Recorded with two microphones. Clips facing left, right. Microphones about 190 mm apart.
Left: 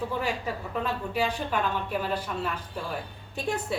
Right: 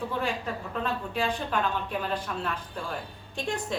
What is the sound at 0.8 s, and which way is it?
A woman's voice, 10° left (ahead or behind).